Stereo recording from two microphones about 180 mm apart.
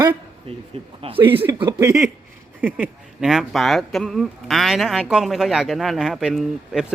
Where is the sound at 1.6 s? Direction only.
20° right (ahead or behind).